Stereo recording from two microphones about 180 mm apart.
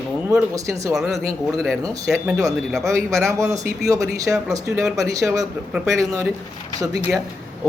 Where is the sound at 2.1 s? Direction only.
15° right (ahead or behind).